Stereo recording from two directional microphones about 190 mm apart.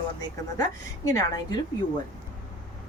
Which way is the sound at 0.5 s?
20° left (ahead or behind).